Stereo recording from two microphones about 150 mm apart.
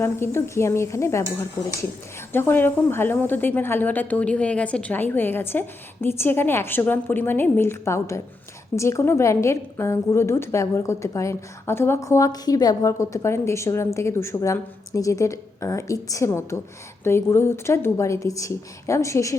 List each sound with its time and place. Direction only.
0.0 s a woman's voice: 15° left (ahead or behind)